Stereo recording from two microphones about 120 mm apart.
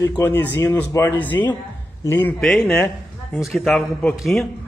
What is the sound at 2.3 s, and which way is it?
Speech, 5° left (ahead or behind).